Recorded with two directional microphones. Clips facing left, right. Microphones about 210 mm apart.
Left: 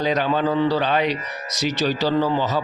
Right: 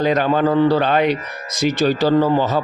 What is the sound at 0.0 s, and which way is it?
Speech, 55° right (ahead or behind).